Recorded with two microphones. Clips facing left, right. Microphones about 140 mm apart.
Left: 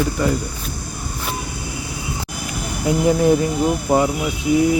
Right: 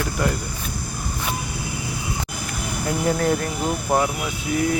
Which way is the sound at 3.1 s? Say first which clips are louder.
Left 6 dB; 10° left (ahead or behind).